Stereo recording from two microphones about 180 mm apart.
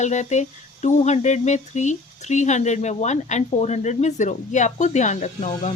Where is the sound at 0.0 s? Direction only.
40° left (ahead or behind).